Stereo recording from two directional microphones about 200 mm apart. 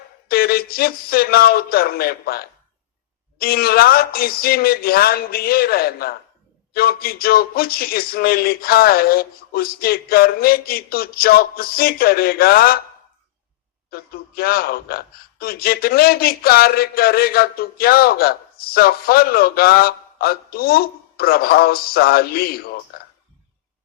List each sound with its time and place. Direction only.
0.3 s a man's voice: 50° left (ahead or behind)
13.9 s a man's voice: 50° left (ahead or behind)